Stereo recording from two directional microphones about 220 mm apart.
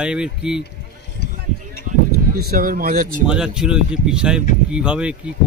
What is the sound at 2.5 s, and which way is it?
Speech, 40° right (ahead or behind).